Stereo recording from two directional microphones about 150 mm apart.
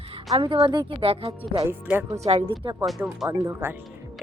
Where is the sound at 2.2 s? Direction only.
45° right (ahead or behind).